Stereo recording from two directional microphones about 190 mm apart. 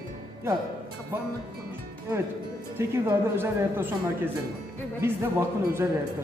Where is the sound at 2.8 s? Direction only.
15° right (ahead or behind).